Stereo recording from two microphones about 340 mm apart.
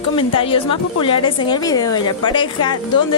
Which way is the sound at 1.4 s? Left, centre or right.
Centre.